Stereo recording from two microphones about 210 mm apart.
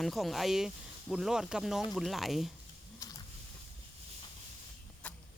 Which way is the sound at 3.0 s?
15° left (ahead or behind).